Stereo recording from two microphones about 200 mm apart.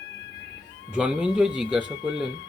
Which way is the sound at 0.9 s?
5° right (ahead or behind).